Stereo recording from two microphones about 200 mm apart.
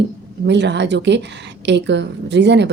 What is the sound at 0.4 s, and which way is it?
Speech, 60° right (ahead or behind).